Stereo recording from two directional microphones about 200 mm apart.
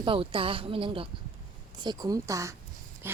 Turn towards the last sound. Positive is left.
turn(degrees=-10)  # may be behind; listen again after turning